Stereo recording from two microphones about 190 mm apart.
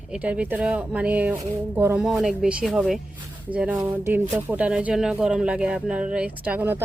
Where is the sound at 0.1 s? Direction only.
5° right (ahead or behind).